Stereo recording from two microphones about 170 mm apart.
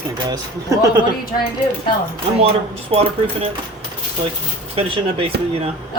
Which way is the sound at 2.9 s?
35° right (ahead or behind).